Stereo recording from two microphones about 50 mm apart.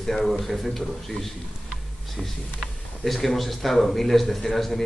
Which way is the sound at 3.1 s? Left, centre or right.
Centre.